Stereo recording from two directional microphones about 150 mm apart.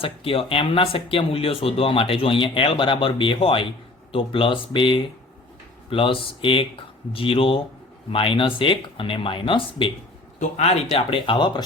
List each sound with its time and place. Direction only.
0.0 s speech: 40° left (ahead or behind)